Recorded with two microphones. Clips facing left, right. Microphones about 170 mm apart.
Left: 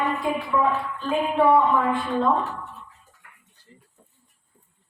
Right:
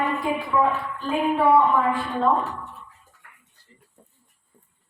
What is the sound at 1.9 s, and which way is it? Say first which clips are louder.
Speech: even; centre (ahead or behind).